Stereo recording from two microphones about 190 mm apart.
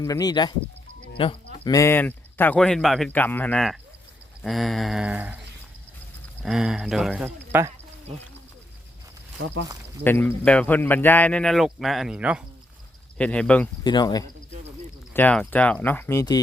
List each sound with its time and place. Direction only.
0.0 s speech: 20° left (ahead or behind)
1.6 s speech: 15° left (ahead or behind); by 5.4 s 10° right (ahead or behind)
6.4 s speech: centre (ahead or behind)
9.4 s speech: 90° right
10.0 s speech: 10° left (ahead or behind); by 12.4 s 5° right (ahead or behind)
13.1 s speech: 5° left (ahead or behind)
13.8 s speech: 20° left (ahead or behind)
15.1 s speech: 10° left (ahead or behind)